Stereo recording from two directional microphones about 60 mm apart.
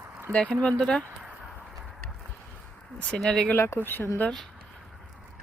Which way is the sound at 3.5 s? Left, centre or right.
Left.